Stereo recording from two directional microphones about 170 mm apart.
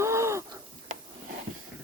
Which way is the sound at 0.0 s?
15° right (ahead or behind).